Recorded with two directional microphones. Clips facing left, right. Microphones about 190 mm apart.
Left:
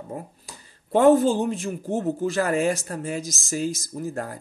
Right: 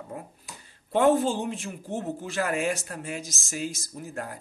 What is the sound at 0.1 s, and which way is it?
Speech, 40° left (ahead or behind).